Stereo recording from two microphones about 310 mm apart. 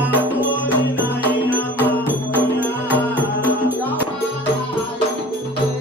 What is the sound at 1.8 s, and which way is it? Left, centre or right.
Music, centre.